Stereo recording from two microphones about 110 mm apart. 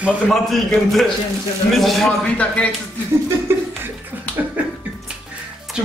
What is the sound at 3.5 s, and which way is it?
Chuckle, 25° right (ahead or behind).